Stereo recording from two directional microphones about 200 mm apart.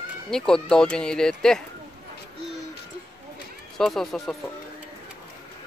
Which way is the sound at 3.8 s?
Centre (ahead or behind).